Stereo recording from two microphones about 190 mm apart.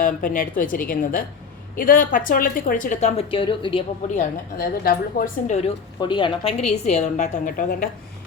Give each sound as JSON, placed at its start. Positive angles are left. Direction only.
{"t": 0.0, "sound": "speech", "side_deg": 45}
{"t": 4.1, "sound": "speech", "side_deg": 45}
{"t": 6.0, "sound": "a woman's voice", "side_deg": 25}